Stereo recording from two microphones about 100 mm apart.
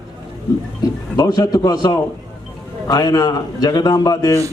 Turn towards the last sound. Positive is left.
turn(degrees=35)  # may be behind; listen again after turning